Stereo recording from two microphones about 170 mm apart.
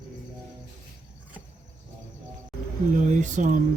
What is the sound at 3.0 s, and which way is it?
Speech, 45° right (ahead or behind).